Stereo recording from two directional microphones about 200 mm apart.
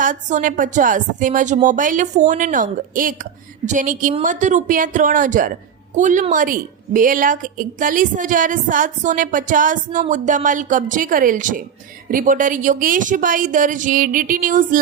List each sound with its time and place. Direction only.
0.0 s speech: 40° right (ahead or behind)